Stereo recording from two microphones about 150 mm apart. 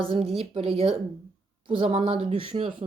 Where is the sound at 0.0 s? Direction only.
35° right (ahead or behind).